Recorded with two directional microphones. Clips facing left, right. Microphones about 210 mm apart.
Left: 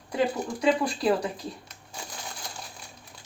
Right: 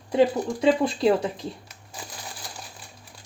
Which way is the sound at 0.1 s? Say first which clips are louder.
Right 6 dB; 25° right (ahead or behind).